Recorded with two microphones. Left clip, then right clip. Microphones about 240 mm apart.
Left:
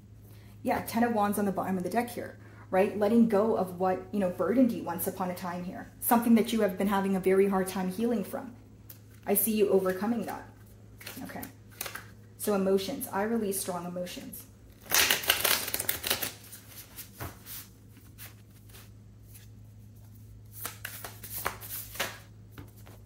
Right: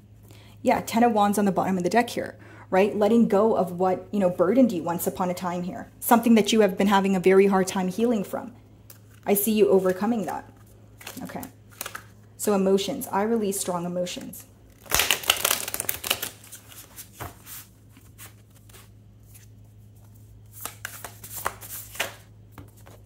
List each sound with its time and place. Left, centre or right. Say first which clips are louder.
0.6 s speech: right 8 dB; right
12.4 s speech: right 5 dB; right
14.9 s crushing: right 3 dB; right
20.8 s a sound: right 4 dB; right